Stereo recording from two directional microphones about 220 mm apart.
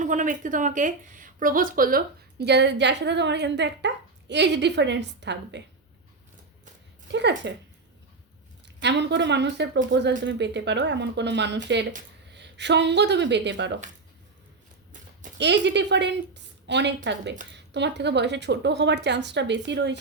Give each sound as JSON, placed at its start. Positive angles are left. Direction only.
{"t": 0.0, "sound": "speech", "side_deg": -35}
{"t": 7.1, "sound": "speech", "side_deg": -55}
{"t": 8.6, "sound": "speech", "side_deg": -50}
{"t": 15.4, "sound": "speech", "side_deg": -50}